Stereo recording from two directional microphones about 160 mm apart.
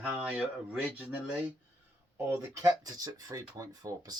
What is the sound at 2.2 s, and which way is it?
Speech, 15° right (ahead or behind).